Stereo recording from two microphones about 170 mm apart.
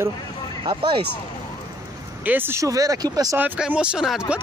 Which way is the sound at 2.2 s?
10° right (ahead or behind).